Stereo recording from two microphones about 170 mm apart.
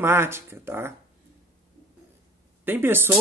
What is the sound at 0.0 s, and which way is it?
Speech, 15° right (ahead or behind).